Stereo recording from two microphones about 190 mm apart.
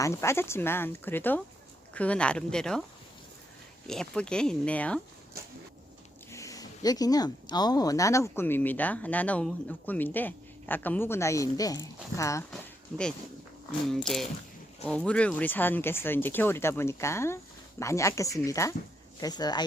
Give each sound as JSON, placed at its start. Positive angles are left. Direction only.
{"t": 0.0, "sound": "speech", "side_deg": 15}
{"t": 3.8, "sound": "speech", "side_deg": 5}
{"t": 6.3, "sound": "speech", "side_deg": 15}
{"t": 14.8, "sound": "speech", "side_deg": 5}